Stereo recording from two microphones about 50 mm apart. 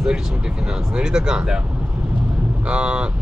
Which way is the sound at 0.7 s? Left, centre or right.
Centre.